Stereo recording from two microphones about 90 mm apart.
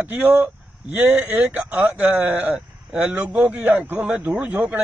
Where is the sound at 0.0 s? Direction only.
20° right (ahead or behind).